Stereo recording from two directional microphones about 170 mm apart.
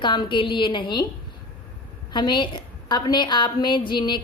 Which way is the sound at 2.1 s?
25° left (ahead or behind).